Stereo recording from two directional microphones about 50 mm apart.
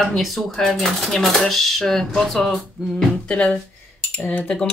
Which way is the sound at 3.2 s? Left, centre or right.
Centre.